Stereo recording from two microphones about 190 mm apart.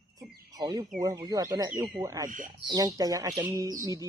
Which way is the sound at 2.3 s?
45° right (ahead or behind).